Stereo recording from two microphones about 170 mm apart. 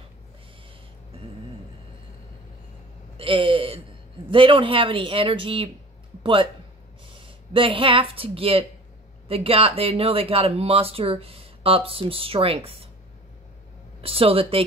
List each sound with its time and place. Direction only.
3.2 s speech: 30° right (ahead or behind)
14.0 s speech: 35° right (ahead or behind)